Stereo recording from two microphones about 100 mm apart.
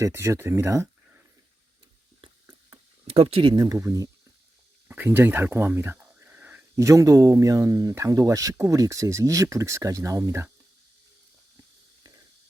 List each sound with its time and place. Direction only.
0.0 s speech: 30° right (ahead or behind)
3.2 s speech: 75° right (ahead or behind)
3.4 s speech: 45° right (ahead or behind)
4.9 s a sound: 20° right (ahead or behind)
6.7 s speech: 30° right (ahead or behind)